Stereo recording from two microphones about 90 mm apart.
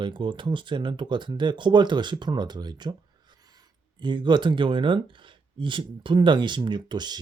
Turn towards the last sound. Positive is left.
turn(degrees=-55)  # may be behind; listen again after turning